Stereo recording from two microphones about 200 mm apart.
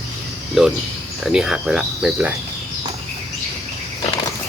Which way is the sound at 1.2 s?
5° right (ahead or behind).